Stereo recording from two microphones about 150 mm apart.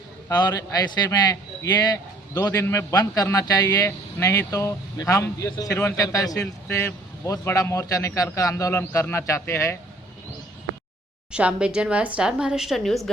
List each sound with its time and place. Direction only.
0.3 s a man's voice: 25° left (ahead or behind)
11.3 s a woman's voice: 5° right (ahead or behind)